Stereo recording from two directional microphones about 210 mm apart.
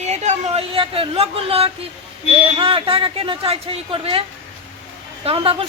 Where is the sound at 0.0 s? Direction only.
35° right (ahead or behind).